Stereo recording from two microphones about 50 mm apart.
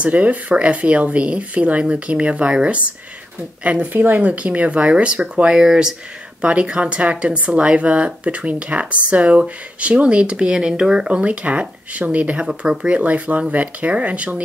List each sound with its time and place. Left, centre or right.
0.0 s speech: right
6.4 s speech: right